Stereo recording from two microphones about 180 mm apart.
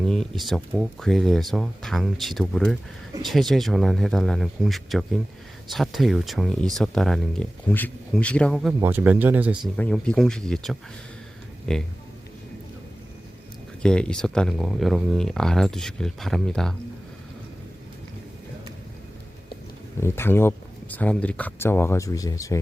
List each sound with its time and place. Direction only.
0.0 s speech: centre (ahead or behind)
8.8 s speech: 10° right (ahead or behind)
9.7 s speech: 5° left (ahead or behind)
13.8 s speech: 5° left (ahead or behind)
20.0 s speech: 15° left (ahead or behind)